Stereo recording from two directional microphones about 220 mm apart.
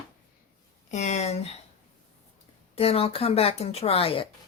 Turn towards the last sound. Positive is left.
turn(degrees=25)  # may be behind; listen again after turning